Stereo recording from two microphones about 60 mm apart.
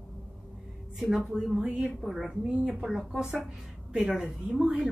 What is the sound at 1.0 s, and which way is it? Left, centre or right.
Speech, centre.